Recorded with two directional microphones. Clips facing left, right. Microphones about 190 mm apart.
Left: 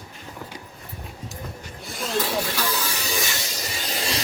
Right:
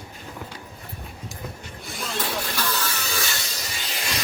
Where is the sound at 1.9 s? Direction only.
Centre (ahead or behind); by 3.3 s 15° left (ahead or behind).